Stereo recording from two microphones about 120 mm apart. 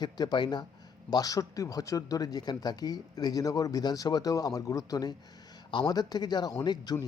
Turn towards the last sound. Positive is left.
turn(degrees=35)  # may be behind; listen again after turning